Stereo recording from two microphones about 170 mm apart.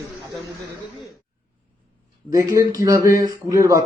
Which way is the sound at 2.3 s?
20° right (ahead or behind).